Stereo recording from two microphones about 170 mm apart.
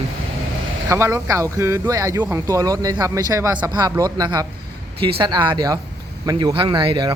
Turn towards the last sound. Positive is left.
turn(degrees=-30)  # may be behind; listen again after turning